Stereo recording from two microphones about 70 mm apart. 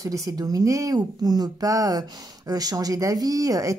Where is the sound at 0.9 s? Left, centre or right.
Right.